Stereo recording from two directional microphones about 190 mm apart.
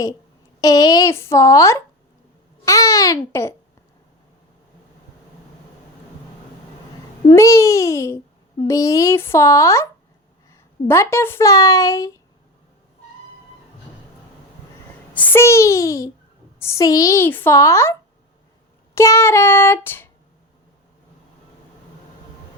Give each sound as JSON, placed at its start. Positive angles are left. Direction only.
{"t": 0.6, "sound": "a woman's voice", "side_deg": 20}
{"t": 7.3, "sound": "a woman's voice", "side_deg": 15}
{"t": 15.1, "sound": "a woman's voice", "side_deg": 10}
{"t": 18.9, "sound": "a woman's voice", "side_deg": 15}